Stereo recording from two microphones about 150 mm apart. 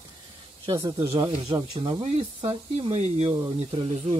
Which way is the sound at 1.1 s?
35° right (ahead or behind).